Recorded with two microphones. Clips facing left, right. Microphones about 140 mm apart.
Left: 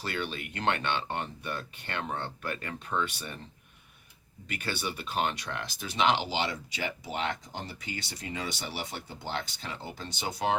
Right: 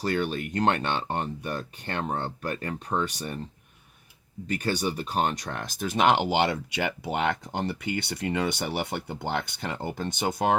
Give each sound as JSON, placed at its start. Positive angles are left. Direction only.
{"t": 0.0, "sound": "speech", "side_deg": -40}
{"t": 4.4, "sound": "speech", "side_deg": -40}